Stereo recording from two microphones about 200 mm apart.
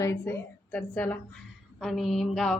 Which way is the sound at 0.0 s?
10° left (ahead or behind).